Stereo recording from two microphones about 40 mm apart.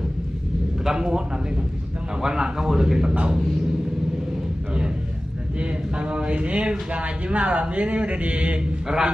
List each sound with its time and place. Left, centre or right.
0.8 s speech: centre
2.2 s speech: centre
5.6 s a man's voice: right
8.8 s speech: centre